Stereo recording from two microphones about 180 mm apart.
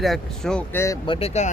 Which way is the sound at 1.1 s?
40° left (ahead or behind).